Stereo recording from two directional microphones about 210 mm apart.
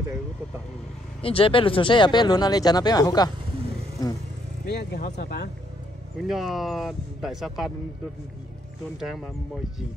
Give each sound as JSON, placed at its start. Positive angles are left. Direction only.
{"t": 1.2, "sound": "speech", "side_deg": 25}
{"t": 4.6, "sound": "speech", "side_deg": 50}
{"t": 6.2, "sound": "speech", "side_deg": 0}
{"t": 9.0, "sound": "speech", "side_deg": 0}